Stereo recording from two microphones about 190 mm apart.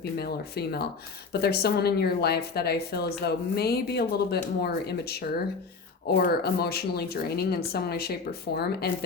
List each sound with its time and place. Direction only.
0.2 s speech: 55° left (ahead or behind)